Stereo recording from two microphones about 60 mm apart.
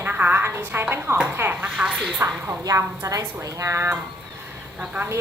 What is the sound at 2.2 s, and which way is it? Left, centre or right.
Speech, right.